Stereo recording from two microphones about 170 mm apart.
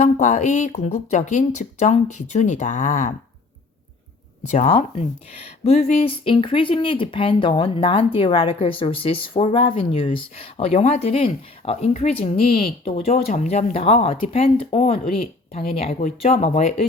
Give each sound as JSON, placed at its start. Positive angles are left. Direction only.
{"t": 0.0, "sound": "speech", "side_deg": 45}
{"t": 4.4, "sound": "speech", "side_deg": 45}